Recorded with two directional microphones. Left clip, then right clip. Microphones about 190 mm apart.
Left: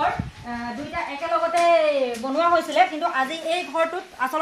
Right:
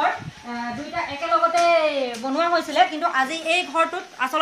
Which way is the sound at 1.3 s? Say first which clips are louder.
Right 4 dB; 5° left (ahead or behind).